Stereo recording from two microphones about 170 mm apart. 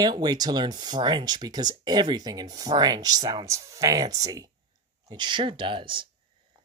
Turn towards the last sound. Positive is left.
turn(degrees=-30)  # may be behind; listen again after turning